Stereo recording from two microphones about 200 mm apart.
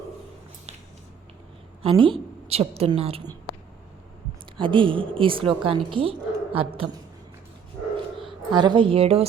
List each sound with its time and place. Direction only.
1.8 s a woman's voice: 25° right (ahead or behind)
4.5 s a woman's voice: 25° right (ahead or behind)
8.3 s a woman's voice: 25° right (ahead or behind)